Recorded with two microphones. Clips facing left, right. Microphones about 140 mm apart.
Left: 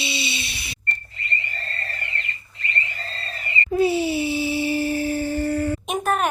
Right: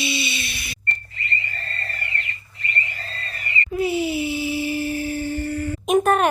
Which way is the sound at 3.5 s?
30° left (ahead or behind).